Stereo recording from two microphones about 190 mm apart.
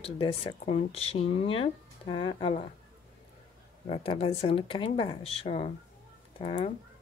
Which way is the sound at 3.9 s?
30° left (ahead or behind).